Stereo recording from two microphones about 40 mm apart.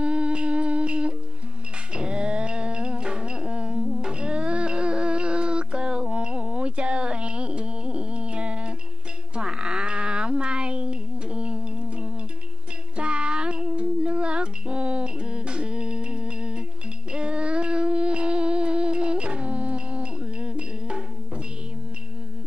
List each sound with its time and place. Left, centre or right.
0.0 s humming: right
2.0 s music: right
9.3 s child singing: right
12.9 s music: right
17.1 s a sound: right